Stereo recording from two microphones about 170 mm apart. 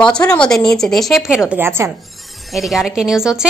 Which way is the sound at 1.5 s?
15° right (ahead or behind).